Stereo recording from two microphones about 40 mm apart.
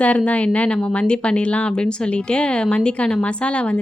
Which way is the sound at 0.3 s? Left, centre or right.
Left.